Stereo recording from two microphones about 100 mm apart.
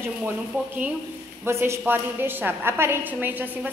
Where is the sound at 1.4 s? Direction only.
25° right (ahead or behind).